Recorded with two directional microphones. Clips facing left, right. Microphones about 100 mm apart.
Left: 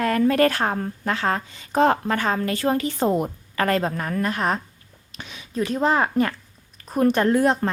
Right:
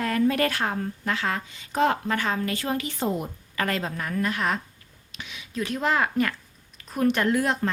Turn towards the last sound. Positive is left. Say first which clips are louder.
# left 5 dB
turn(degrees=35)  # may be behind; listen again after turning